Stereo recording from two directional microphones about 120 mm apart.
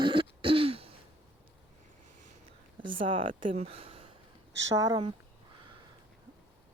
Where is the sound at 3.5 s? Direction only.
55° right (ahead or behind).